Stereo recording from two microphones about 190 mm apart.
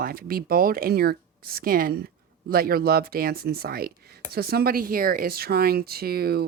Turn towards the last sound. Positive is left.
turn(degrees=-55)  # may be behind; listen again after turning